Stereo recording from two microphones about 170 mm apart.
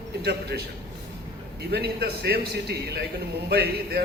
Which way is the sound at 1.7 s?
70° right (ahead or behind).